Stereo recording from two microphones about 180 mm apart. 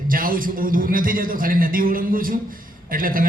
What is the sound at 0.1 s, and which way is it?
A man's voice, 50° right (ahead or behind).